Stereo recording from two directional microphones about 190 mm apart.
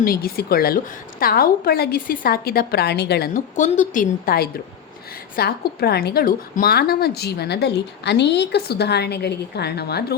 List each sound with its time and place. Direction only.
0.0 s a woman's voice: 50° left (ahead or behind)
3.3 s a woman's voice: 45° left (ahead or behind)